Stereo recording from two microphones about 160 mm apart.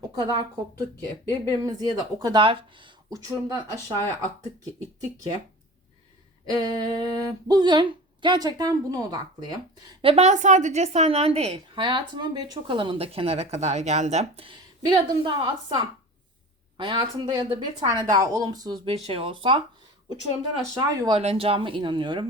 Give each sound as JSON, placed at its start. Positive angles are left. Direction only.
{"t": 0.0, "sound": "a sound", "side_deg": -25}
{"t": 0.9, "sound": "speech", "side_deg": 15}
{"t": 1.6, "sound": "a woman's voice", "side_deg": -25}
{"t": 3.1, "sound": "speech", "side_deg": -20}
{"t": 6.4, "sound": "speech", "side_deg": -25}
{"t": 10.0, "sound": "a woman's voice", "side_deg": -40}
{"t": 14.8, "sound": "speech", "side_deg": -25}
{"t": 16.7, "sound": "speech", "side_deg": -30}
{"t": 19.0, "sound": "a woman's voice", "side_deg": -35}
{"t": 20.9, "sound": "speech", "side_deg": -25}
{"t": 21.2, "sound": "a woman's voice", "side_deg": -40}